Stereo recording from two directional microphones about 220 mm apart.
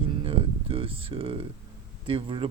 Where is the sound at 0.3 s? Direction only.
25° right (ahead or behind).